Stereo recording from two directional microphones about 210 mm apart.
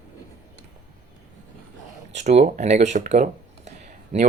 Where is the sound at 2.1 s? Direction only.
35° right (ahead or behind).